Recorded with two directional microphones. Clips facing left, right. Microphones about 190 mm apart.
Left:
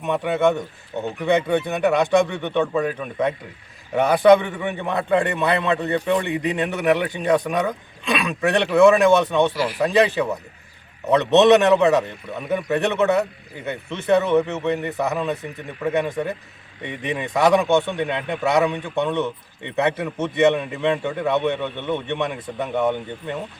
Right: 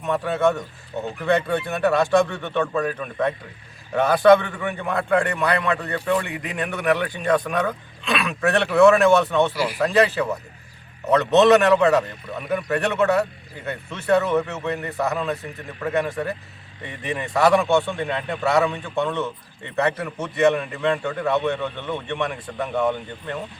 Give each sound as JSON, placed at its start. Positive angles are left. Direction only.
{"t": 0.0, "sound": "a man's voice", "side_deg": 20}